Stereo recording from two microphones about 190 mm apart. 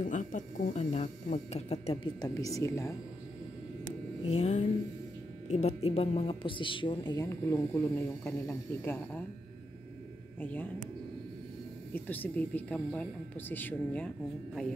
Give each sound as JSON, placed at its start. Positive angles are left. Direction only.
{"t": 0.0, "sound": "speech", "side_deg": 40}
{"t": 2.2, "sound": "speech", "side_deg": 15}
{"t": 4.3, "sound": "speech", "side_deg": 35}
{"t": 10.4, "sound": "speech", "side_deg": 10}
{"t": 11.9, "sound": "speech", "side_deg": 10}